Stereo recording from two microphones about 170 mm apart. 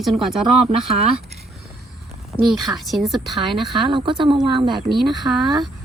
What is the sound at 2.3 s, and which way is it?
Speech, 25° left (ahead or behind).